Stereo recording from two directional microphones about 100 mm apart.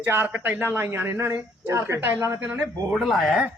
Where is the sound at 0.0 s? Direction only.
25° right (ahead or behind).